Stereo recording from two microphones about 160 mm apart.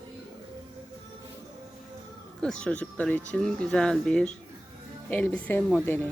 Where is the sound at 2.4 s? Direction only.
5° left (ahead or behind).